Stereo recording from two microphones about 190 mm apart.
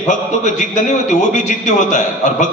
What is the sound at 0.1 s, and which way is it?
A man's voice, 40° left (ahead or behind).